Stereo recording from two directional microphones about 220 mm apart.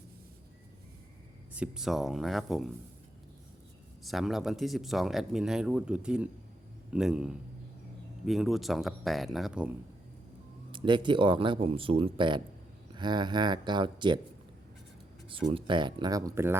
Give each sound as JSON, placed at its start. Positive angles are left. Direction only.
{"t": 1.5, "sound": "speech", "side_deg": -5}
{"t": 4.0, "sound": "speech", "side_deg": 0}
{"t": 10.7, "sound": "speech", "side_deg": -20}
{"t": 15.3, "sound": "speech", "side_deg": -25}